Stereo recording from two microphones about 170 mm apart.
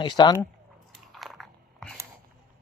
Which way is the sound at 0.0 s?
25° left (ahead or behind).